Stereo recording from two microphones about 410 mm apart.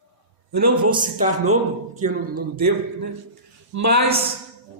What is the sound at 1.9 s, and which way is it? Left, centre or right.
Speech, centre.